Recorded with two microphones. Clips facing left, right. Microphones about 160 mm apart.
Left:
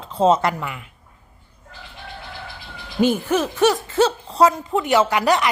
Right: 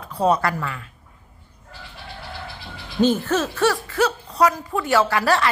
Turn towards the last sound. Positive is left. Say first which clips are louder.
# left 1 dB
turn(degrees=15)  # may be behind; listen again after turning